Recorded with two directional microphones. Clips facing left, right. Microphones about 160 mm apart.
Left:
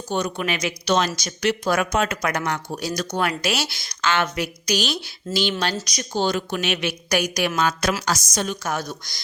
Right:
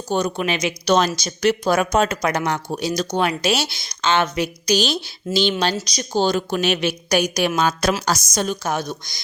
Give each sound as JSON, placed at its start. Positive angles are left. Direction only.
{"t": 0.1, "sound": "speech", "side_deg": -35}
{"t": 0.9, "sound": "speech", "side_deg": -40}
{"t": 1.6, "sound": "speech", "side_deg": -30}
{"t": 7.1, "sound": "speech", "side_deg": -20}
{"t": 8.7, "sound": "speech", "side_deg": -20}